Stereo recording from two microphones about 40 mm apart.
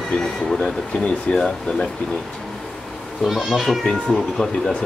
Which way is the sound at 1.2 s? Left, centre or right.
Centre.